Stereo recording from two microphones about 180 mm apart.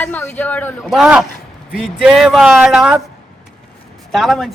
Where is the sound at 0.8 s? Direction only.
5° right (ahead or behind).